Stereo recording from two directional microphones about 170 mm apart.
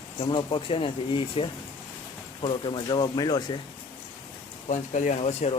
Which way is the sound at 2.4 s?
30° left (ahead or behind).